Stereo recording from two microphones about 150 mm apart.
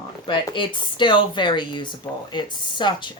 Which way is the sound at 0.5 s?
35° left (ahead or behind).